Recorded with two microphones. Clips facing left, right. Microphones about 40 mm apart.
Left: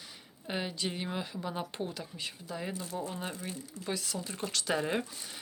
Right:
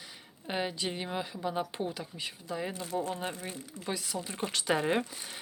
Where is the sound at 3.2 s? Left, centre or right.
Centre.